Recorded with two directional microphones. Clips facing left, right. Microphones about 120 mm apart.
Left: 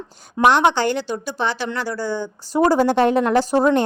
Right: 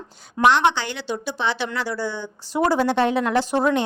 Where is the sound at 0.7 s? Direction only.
45° left (ahead or behind).